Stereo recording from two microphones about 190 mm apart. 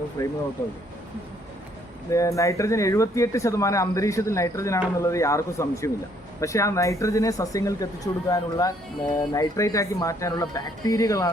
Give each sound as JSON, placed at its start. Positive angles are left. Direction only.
{"t": 0.2, "sound": "speech", "side_deg": 15}
{"t": 2.0, "sound": "speech", "side_deg": 15}